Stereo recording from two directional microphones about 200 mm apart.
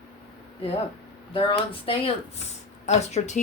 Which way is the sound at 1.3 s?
25° left (ahead or behind).